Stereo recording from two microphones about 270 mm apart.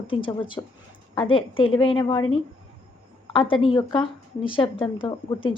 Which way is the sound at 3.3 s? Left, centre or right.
Centre.